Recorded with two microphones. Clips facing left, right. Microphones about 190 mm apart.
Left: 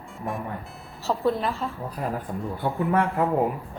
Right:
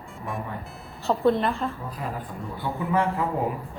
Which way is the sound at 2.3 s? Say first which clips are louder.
Left 5 dB; 35° left (ahead or behind).